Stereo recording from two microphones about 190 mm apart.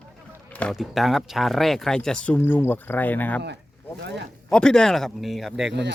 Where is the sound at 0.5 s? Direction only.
5° left (ahead or behind).